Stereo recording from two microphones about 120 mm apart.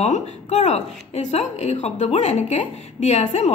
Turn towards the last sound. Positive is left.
turn(degrees=60)  # may be behind; listen again after turning